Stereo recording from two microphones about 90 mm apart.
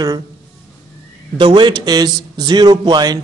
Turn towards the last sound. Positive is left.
turn(degrees=-50)  # may be behind; listen again after turning